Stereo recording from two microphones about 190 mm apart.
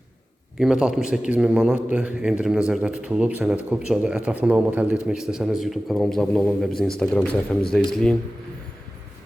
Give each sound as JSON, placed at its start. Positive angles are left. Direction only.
{"t": 0.6, "sound": "speech", "side_deg": -5}